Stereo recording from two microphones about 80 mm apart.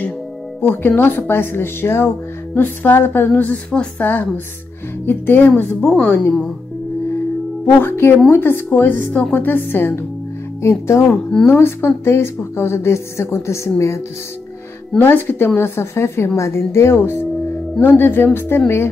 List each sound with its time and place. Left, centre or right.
0.6 s speech: left
5.0 s speech: left
5.8 s speech: centre
7.6 s speech: left